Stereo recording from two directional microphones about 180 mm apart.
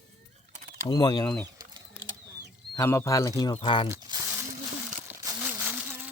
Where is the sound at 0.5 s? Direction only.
45° right (ahead or behind).